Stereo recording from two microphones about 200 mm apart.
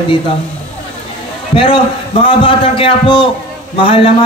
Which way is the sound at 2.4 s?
25° left (ahead or behind).